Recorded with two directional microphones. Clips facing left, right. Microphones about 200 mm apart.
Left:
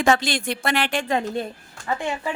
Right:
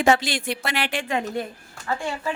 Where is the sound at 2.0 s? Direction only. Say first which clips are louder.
Left 2 dB; 20° left (ahead or behind).